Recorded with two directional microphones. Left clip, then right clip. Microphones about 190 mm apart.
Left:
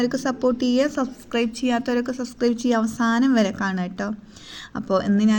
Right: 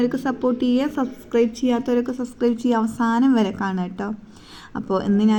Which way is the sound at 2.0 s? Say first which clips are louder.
Right 2 dB; 50° left (ahead or behind).